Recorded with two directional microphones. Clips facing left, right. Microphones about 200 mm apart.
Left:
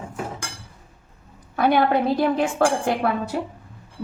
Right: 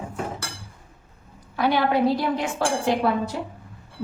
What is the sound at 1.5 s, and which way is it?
Speech, 55° left (ahead or behind).